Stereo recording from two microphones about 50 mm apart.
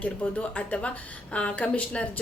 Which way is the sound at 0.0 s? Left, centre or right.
Left.